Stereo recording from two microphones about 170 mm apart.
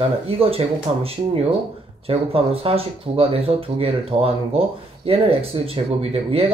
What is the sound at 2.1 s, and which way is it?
Speech, 35° right (ahead or behind).